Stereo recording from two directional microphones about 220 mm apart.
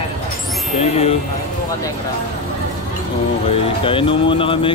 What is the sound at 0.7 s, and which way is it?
Speech, 30° left (ahead or behind).